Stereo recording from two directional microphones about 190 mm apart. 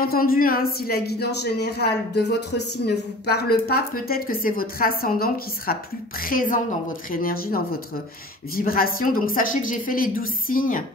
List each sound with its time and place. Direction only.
0.0 s speech: 50° left (ahead or behind)